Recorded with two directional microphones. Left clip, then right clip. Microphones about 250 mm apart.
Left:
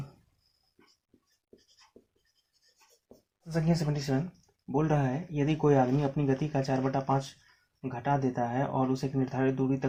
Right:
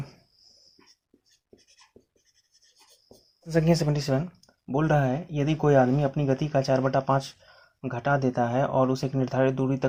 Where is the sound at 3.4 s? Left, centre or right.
Right.